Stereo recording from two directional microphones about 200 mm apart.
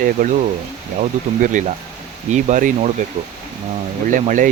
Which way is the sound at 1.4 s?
40° right (ahead or behind).